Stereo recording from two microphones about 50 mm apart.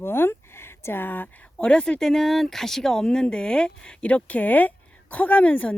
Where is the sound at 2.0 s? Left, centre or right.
Centre.